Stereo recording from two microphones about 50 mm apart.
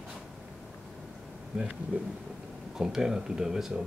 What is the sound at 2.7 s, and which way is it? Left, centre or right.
Speech, centre.